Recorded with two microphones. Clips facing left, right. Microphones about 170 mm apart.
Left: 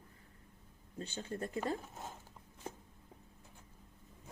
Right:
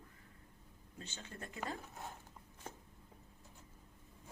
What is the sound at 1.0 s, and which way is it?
Speech, 35° left (ahead or behind).